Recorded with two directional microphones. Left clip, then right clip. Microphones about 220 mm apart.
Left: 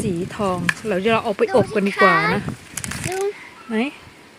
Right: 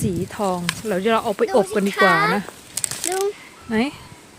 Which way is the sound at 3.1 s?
55° right (ahead or behind).